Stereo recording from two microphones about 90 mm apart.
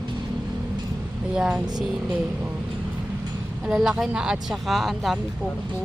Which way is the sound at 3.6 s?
5° right (ahead or behind).